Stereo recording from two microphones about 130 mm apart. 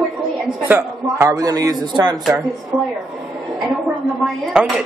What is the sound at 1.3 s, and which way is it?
Speech, 25° right (ahead or behind).